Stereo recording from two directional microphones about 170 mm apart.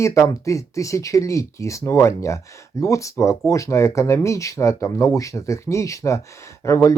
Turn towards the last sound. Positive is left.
turn(degrees=15)  # may be behind; listen again after turning